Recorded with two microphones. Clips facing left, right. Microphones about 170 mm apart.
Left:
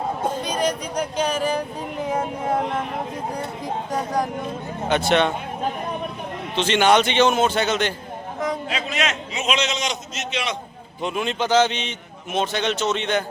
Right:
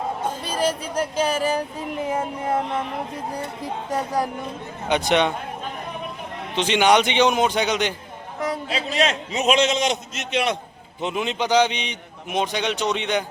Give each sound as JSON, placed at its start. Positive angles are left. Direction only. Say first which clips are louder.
{"t": 0.5, "sound": "a man's voice", "louder": "even", "side_deg": -5}
{"t": 3.8, "sound": "a man's voice", "louder": "right 1 dB", "side_deg": -10}
{"t": 6.6, "sound": "a man's voice", "louder": "even", "side_deg": -15}
{"t": 8.7, "sound": "a man's voice", "louder": "right 3 dB", "side_deg": -35}
{"t": 11.0, "sound": "a man's voice", "louder": "even", "side_deg": -20}